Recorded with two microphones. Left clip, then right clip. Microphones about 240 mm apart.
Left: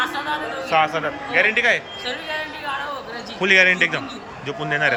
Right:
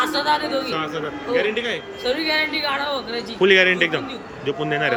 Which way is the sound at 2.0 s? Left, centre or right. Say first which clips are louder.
Right 10 dB; right.